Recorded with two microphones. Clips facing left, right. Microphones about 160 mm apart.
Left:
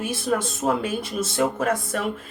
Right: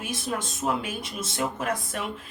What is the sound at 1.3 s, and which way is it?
Speech, 45° left (ahead or behind).